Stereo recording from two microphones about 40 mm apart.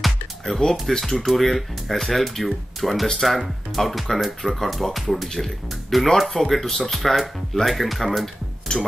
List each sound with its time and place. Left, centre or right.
0.6 s speech: centre
8.7 s speech: centre